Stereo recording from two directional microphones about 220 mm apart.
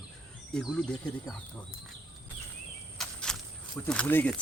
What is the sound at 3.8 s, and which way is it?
Speech, 5° left (ahead or behind).